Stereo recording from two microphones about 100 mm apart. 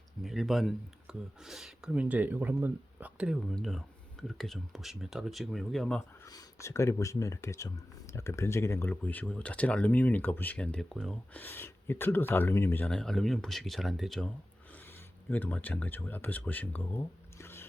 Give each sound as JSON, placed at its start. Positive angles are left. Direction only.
{"t": 0.2, "sound": "speech", "side_deg": 0}
{"t": 3.5, "sound": "speech", "side_deg": 5}
{"t": 6.2, "sound": "speech", "side_deg": 35}
{"t": 12.9, "sound": "speech", "side_deg": 5}
{"t": 17.3, "sound": "squish", "side_deg": 25}